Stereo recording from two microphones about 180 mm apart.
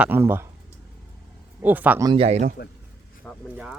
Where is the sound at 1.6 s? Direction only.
10° right (ahead or behind).